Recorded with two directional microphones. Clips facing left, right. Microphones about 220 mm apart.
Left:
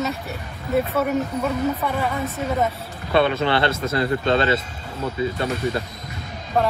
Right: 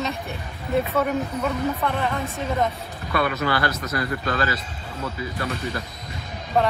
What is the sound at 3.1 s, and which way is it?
Speech, 25° left (ahead or behind).